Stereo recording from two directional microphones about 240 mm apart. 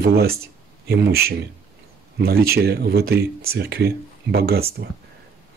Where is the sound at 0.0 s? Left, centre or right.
Right.